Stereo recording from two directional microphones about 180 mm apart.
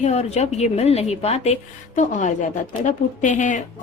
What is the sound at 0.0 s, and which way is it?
A woman's voice, 40° left (ahead or behind).